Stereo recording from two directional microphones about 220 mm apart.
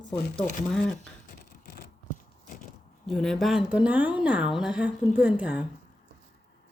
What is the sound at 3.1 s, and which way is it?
Speech, centre (ahead or behind).